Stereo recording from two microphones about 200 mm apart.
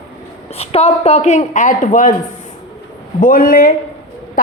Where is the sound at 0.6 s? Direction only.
30° left (ahead or behind).